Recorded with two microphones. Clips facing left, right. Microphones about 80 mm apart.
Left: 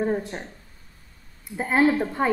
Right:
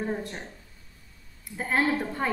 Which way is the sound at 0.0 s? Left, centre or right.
Centre.